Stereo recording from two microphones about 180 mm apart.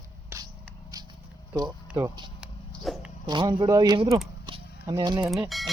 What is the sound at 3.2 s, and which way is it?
Speech, 25° right (ahead or behind).